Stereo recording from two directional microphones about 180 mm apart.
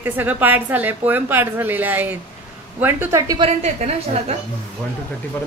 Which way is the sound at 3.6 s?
35° right (ahead or behind).